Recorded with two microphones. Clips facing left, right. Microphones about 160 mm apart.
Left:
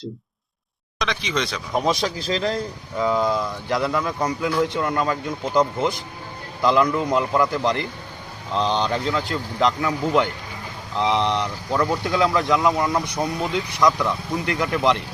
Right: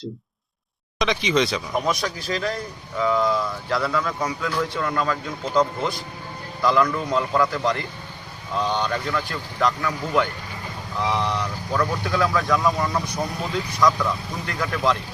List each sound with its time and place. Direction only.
0.9 s speech: centre (ahead or behind)
1.8 s speech: 25° left (ahead or behind)